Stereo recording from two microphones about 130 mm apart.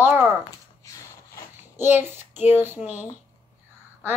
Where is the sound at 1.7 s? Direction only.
15° right (ahead or behind).